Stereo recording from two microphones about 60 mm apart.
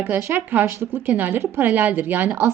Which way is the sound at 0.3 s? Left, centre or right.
Right.